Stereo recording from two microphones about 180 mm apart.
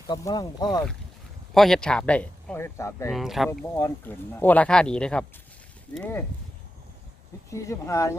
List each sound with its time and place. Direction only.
0.1 s speech: 20° left (ahead or behind)
1.5 s speech: centre (ahead or behind)
3.1 s speech: centre (ahead or behind)
3.6 s speech: 15° left (ahead or behind)
7.5 s speech: 15° left (ahead or behind)